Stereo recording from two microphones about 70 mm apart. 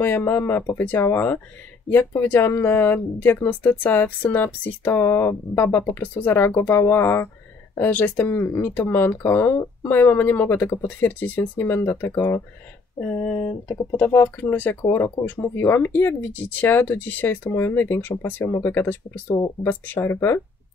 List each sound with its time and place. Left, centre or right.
0.0 s speech: left
13.5 s speech: left
14.9 s speech: left